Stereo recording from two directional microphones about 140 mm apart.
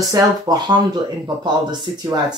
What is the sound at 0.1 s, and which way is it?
Speech, 30° right (ahead or behind).